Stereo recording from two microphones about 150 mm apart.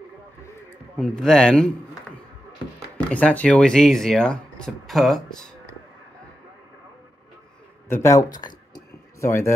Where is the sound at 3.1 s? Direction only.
10° left (ahead or behind).